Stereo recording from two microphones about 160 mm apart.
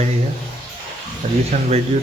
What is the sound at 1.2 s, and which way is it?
Speech, 45° right (ahead or behind).